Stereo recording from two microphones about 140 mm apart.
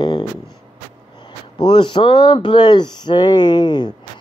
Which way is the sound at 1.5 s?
35° left (ahead or behind).